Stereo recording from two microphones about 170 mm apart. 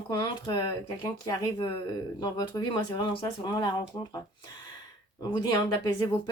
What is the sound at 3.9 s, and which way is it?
Speech, 15° left (ahead or behind).